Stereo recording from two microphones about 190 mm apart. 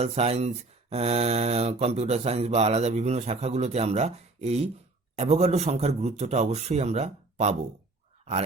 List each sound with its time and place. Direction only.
0.0 s speech: 35° right (ahead or behind)